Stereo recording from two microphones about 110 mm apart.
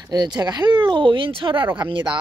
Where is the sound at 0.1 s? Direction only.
40° right (ahead or behind).